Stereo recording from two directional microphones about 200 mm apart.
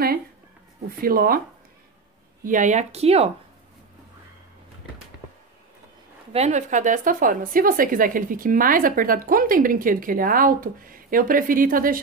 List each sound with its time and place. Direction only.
0.8 s a woman's voice: 45° right (ahead or behind)
2.4 s speech: 40° right (ahead or behind)
6.3 s a woman's voice: 35° right (ahead or behind)